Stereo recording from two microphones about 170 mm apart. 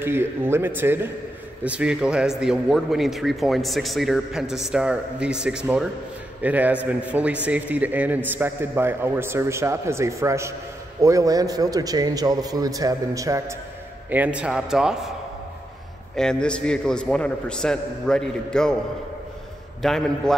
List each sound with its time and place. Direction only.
0.0 s a man's voice: 15° right (ahead or behind)
14.1 s a man's voice: 10° right (ahead or behind)
16.2 s a man's voice: 5° left (ahead or behind)
19.8 s a man's voice: centre (ahead or behind)